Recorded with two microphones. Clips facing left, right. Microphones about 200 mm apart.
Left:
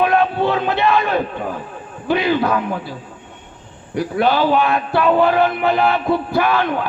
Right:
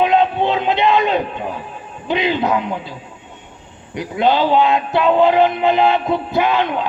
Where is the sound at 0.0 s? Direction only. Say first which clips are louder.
Right 1 dB; 20° right (ahead or behind).